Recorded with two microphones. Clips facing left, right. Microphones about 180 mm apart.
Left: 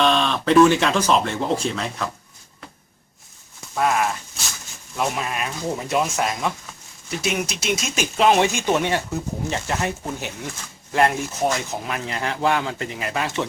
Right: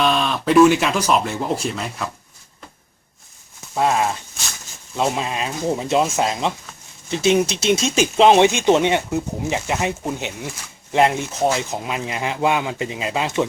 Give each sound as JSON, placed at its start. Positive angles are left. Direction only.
{"t": 0.0, "sound": "speech", "side_deg": -5}
{"t": 3.8, "sound": "speech", "side_deg": -25}